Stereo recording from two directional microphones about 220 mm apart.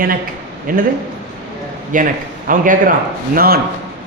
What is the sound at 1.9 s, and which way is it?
A man's voice, 35° right (ahead or behind).